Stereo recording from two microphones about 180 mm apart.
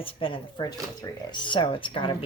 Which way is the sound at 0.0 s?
30° left (ahead or behind).